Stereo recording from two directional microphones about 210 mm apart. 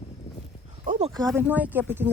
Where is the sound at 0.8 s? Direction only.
35° right (ahead or behind).